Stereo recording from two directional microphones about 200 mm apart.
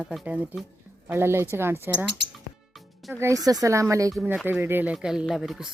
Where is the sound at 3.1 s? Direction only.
15° right (ahead or behind).